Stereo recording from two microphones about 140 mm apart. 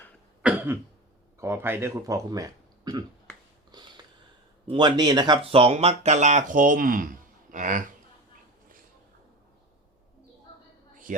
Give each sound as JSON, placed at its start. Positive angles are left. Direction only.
{"t": 0.4, "sound": "cough", "side_deg": -10}
{"t": 1.4, "sound": "speech", "side_deg": -15}
{"t": 3.7, "sound": "a sound", "side_deg": -30}
{"t": 4.6, "sound": "speech", "side_deg": -35}
{"t": 5.5, "sound": "speech", "side_deg": -45}